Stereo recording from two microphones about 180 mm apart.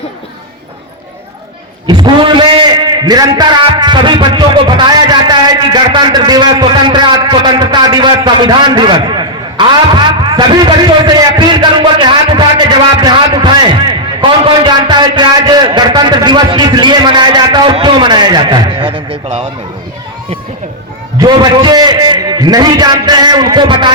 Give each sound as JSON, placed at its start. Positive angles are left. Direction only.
{"t": 1.9, "sound": "a man's voice", "side_deg": -25}
{"t": 21.2, "sound": "a man's voice", "side_deg": -25}